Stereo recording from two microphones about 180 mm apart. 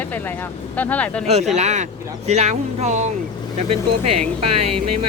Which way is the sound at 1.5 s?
40° right (ahead or behind).